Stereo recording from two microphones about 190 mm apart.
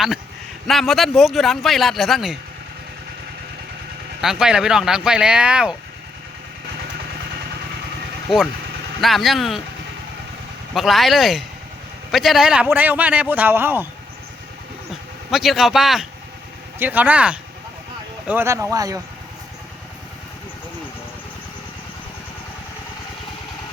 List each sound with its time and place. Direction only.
0.7 s a man's voice: centre (ahead or behind)
4.2 s a man's voice: centre (ahead or behind)
8.3 s a man's voice: 5° right (ahead or behind)
10.8 s a man's voice: centre (ahead or behind)
15.3 s a man's voice: centre (ahead or behind); by 19.0 s 20° right (ahead or behind)